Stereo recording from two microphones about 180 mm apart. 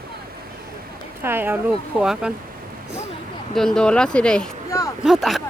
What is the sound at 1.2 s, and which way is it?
Speech, 10° right (ahead or behind).